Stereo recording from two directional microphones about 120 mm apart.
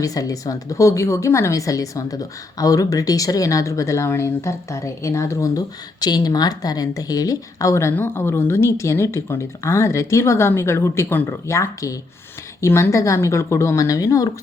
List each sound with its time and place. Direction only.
0.0 s speech: 30° left (ahead or behind)